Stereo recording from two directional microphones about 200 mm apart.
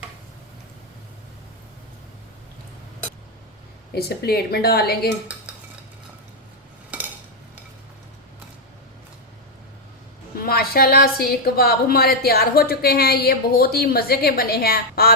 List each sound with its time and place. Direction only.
3.9 s a woman's voice: 50° left (ahead or behind)
6.9 s cutlery: 5° right (ahead or behind)
10.3 s a woman's voice: 50° left (ahead or behind)